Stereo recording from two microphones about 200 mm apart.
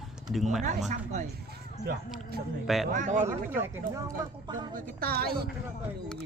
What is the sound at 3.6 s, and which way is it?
Speech, 15° right (ahead or behind).